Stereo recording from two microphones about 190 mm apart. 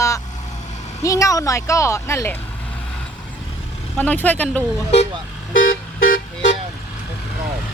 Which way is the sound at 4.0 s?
10° left (ahead or behind).